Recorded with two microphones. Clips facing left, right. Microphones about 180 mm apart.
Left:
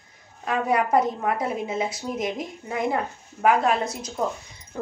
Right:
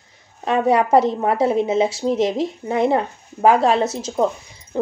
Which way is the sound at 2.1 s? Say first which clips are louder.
Right 7 dB; 85° right.